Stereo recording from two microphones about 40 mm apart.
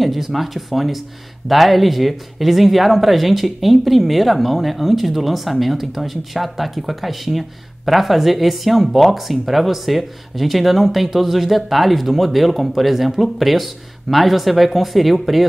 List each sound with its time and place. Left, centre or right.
0.0 s speech: centre